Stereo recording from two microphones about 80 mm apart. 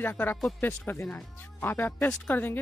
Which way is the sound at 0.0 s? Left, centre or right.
Left.